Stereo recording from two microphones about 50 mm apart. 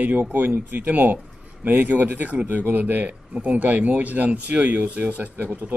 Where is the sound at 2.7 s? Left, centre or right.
Right.